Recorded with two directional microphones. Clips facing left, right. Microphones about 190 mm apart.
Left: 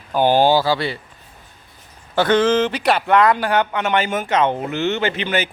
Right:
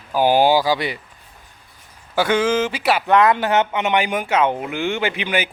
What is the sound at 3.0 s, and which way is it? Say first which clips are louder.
Speech: right 1 dB; 20° right (ahead or behind).